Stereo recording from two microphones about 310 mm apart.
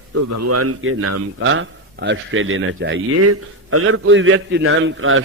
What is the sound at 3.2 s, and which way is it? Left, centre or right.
A man's voice, right.